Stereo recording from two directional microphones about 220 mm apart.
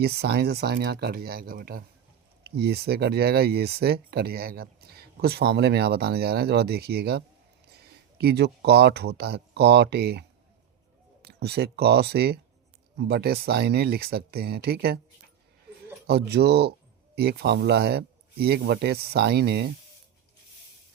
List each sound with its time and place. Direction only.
0.0 s speech: 45° right (ahead or behind)
16.0 s speech: 45° right (ahead or behind)